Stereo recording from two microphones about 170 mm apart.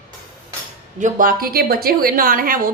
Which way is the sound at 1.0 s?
55° right (ahead or behind).